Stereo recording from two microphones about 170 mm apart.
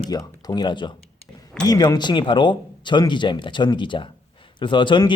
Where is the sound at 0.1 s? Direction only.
25° left (ahead or behind).